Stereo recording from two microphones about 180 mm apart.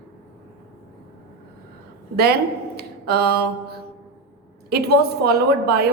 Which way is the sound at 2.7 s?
60° right (ahead or behind).